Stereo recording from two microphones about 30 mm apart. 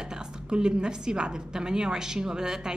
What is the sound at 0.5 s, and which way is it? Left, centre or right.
A woman's voice, right.